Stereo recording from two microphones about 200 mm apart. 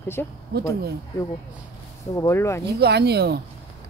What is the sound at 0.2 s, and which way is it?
Speech, 10° left (ahead or behind).